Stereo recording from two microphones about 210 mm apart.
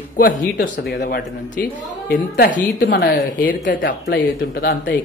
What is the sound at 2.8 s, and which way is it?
Speech, 60° left (ahead or behind).